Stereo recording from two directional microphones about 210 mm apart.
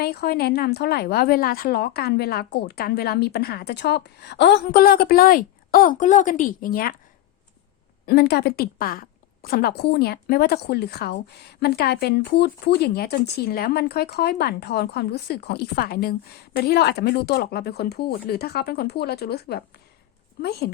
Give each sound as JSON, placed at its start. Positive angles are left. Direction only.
{"t": 0.0, "sound": "a woman's voice", "side_deg": 50}
{"t": 8.0, "sound": "a woman's voice", "side_deg": 50}